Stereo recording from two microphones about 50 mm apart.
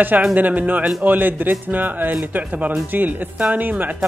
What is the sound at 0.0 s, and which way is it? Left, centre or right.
Speech, right.